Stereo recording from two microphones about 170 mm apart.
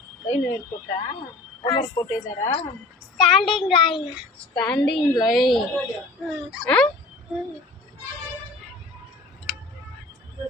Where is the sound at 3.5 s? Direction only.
30° left (ahead or behind).